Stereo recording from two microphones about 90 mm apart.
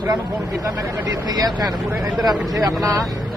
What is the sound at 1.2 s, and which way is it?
Speech, 50° right (ahead or behind).